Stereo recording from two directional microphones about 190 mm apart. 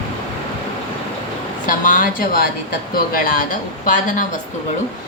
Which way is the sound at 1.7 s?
45° left (ahead or behind).